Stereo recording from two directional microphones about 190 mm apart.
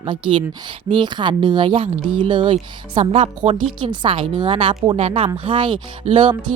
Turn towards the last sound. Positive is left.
turn(degrees=-25)  # may be behind; listen again after turning